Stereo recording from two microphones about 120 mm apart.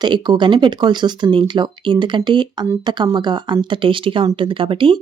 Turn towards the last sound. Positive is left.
turn(degrees=-45)  # may be behind; listen again after turning